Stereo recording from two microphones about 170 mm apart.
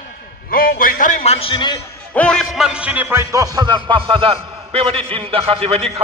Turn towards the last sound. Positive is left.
turn(degrees=-35)  # may be behind; listen again after turning